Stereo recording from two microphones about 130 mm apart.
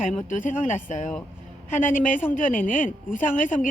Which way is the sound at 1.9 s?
90° left.